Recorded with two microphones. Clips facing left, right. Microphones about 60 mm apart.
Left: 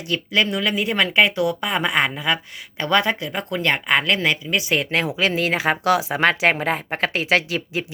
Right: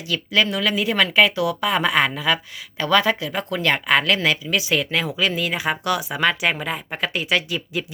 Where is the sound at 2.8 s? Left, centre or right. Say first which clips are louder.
Right 1 dB; left.